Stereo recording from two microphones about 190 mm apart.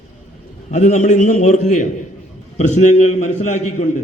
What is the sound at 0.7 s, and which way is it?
A man's voice, 40° left (ahead or behind).